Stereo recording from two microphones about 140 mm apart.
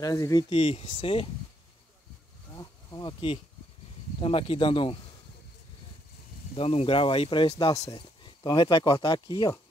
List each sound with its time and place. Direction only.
0.0 s speech: 25° left (ahead or behind)
2.5 s insect: 30° left (ahead or behind)
4.2 s speech: 40° left (ahead or behind)
6.5 s speech: 45° left (ahead or behind); by 9.6 s 30° left (ahead or behind)